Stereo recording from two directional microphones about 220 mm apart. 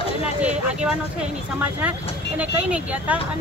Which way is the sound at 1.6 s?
5° right (ahead or behind).